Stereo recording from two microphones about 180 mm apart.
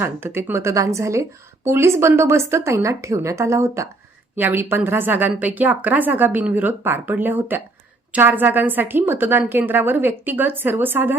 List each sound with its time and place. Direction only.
0.0 s a woman's voice: 15° right (ahead or behind)